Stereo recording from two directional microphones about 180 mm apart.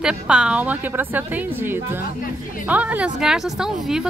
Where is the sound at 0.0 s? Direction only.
5° right (ahead or behind).